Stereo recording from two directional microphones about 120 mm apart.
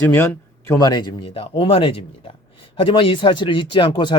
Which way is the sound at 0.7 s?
35° left (ahead or behind).